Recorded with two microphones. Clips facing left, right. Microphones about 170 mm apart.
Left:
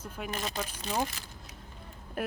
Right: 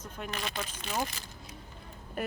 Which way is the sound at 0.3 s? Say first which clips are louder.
Left 2 dB; 40° left (ahead or behind).